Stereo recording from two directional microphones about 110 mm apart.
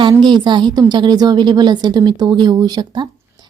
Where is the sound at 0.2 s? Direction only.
45° right (ahead or behind).